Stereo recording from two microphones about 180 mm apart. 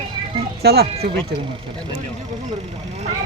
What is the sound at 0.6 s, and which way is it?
Speech, 60° right (ahead or behind).